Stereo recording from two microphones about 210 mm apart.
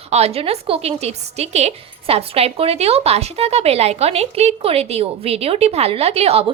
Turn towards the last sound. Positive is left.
turn(degrees=-30)  # may be behind; listen again after turning